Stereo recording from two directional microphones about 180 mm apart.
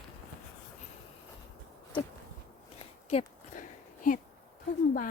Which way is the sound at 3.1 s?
40° left (ahead or behind).